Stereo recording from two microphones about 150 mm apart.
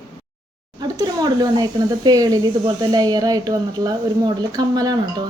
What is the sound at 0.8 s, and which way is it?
Speech, 25° right (ahead or behind).